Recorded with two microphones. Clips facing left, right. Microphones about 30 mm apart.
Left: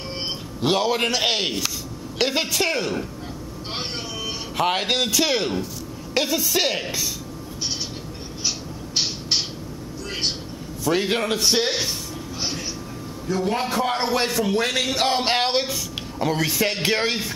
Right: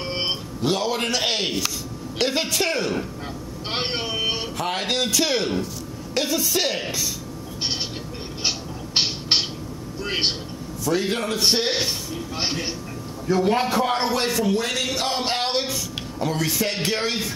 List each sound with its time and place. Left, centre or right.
0.1 s a sound: right
0.6 s a man's voice: centre
3.7 s speech: right
4.7 s a man's voice: centre
8.5 s a sound: right
10.0 s a woman's voice: right
10.9 s a man's voice: left
11.3 s speech: centre
12.4 s a sound: right
13.3 s a man's voice: centre
14.1 s speech: centre